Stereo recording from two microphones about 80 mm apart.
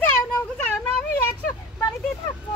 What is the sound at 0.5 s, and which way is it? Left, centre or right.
Speech, centre.